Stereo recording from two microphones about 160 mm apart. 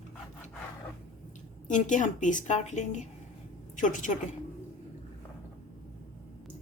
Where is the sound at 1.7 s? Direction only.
50° left (ahead or behind).